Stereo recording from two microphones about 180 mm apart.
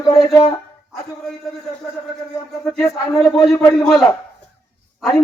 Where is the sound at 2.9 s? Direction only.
Centre (ahead or behind).